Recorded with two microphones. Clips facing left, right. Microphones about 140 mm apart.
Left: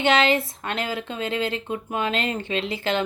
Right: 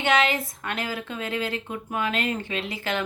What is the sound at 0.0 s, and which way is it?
Speech, 25° left (ahead or behind).